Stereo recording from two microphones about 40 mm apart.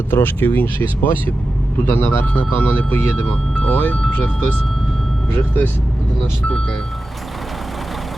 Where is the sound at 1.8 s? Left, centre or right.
Left.